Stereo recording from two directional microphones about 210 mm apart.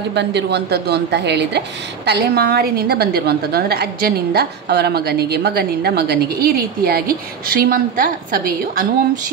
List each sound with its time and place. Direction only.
0.1 s a woman's voice: 55° right (ahead or behind)